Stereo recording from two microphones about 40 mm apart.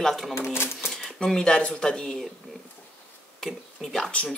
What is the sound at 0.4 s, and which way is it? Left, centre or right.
Speech, left.